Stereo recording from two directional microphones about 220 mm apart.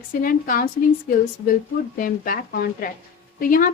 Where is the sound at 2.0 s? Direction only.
40° left (ahead or behind).